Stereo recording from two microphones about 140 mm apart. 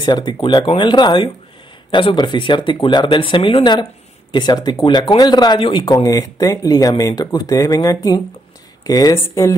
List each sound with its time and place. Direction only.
0.0 s speech: 30° left (ahead or behind)
5.9 s speech: 25° left (ahead or behind)